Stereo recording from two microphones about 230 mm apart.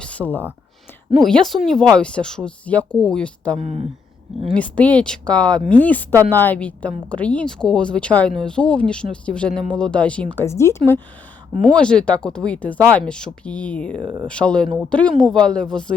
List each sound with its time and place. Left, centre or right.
0.0 s a sound: centre
1.2 s speech: centre
3.6 s speech: right
4.5 s speech: centre
14.0 s speech: centre
14.3 s speech: centre